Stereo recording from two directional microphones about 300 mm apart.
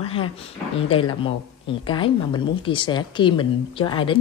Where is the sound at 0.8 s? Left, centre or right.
Centre.